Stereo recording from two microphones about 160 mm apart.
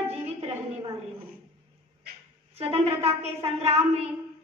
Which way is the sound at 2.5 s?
40° right (ahead or behind).